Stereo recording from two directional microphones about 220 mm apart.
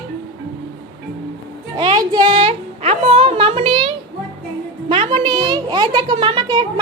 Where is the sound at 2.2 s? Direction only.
30° right (ahead or behind).